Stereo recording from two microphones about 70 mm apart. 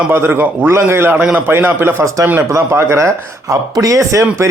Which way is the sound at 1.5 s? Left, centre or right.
Right.